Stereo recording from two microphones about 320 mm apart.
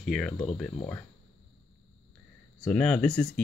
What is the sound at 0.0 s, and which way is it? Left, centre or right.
Speech, centre.